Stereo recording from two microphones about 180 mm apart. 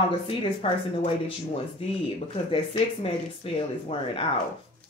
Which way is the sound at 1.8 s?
30° left (ahead or behind).